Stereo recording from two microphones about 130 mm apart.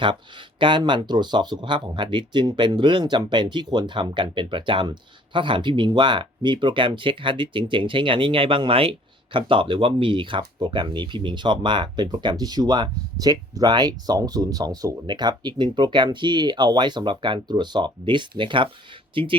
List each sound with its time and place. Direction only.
0.0 s speech: 40° right (ahead or behind)